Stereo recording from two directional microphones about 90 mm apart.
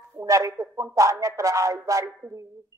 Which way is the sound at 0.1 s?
35° right (ahead or behind).